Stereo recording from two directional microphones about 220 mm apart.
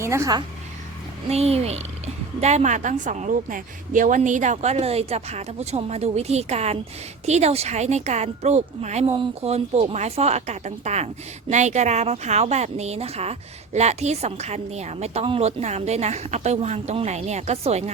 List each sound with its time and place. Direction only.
0.0 s speech: 10° right (ahead or behind)
1.3 s a woman's voice: 30° right (ahead or behind)